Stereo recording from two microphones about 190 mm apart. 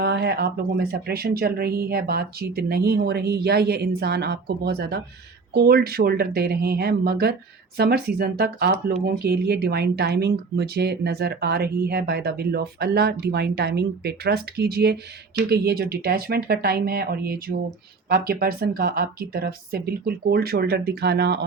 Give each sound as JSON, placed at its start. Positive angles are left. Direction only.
{"t": 0.0, "sound": "speech", "side_deg": -60}